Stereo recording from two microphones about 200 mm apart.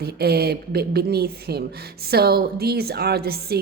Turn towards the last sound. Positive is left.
turn(degrees=-50)  # may be behind; listen again after turning